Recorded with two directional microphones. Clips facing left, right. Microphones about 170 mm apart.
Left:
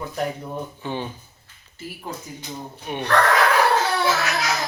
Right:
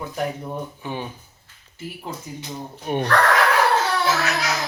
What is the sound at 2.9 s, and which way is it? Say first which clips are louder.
Speech: right 6 dB; 40° right (ahead or behind).